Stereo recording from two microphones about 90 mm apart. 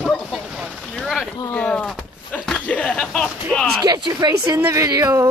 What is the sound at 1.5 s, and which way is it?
Speech, 15° left (ahead or behind).